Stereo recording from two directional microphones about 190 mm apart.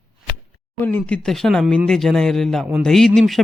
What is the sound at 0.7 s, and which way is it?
Speech, 10° left (ahead or behind).